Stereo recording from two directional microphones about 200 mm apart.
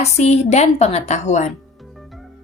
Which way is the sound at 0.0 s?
35° left (ahead or behind).